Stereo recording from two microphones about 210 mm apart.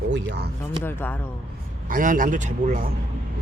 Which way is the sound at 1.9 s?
40° right (ahead or behind).